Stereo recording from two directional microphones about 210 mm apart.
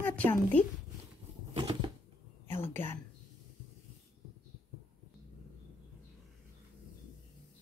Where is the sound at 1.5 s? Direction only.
20° right (ahead or behind).